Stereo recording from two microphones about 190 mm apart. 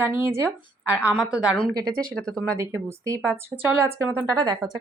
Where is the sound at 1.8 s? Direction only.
50° right (ahead or behind).